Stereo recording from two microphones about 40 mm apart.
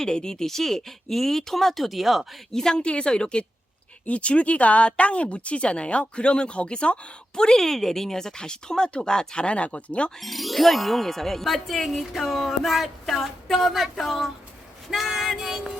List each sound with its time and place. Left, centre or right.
0.0 s speech: centre
2.5 s speech: centre
2.7 s speech: left
10.2 s speech: centre
14.8 s child singing: centre